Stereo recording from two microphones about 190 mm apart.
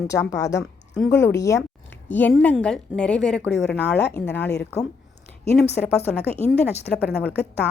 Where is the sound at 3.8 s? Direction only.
65° left (ahead or behind).